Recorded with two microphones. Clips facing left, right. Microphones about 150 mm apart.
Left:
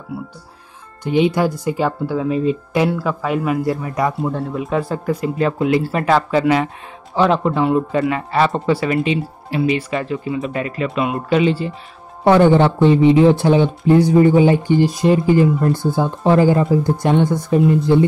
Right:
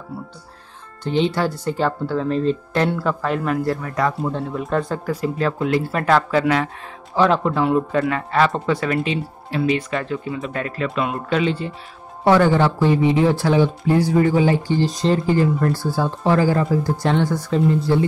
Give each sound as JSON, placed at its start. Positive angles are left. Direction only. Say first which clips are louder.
{"t": 1.0, "sound": "speech", "louder": "left 4 dB", "side_deg": 10}
{"t": 4.2, "sound": "speech", "louder": "left 2 dB", "side_deg": 5}
{"t": 12.3, "sound": "speech", "louder": "left 4 dB", "side_deg": 20}